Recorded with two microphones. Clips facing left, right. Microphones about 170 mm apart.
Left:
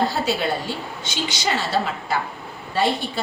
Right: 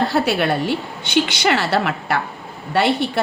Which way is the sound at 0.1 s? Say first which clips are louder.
Right 5 dB; 65° right (ahead or behind).